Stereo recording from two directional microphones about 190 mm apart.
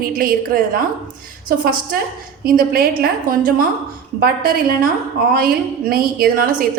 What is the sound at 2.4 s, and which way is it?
A woman's voice, 50° right (ahead or behind).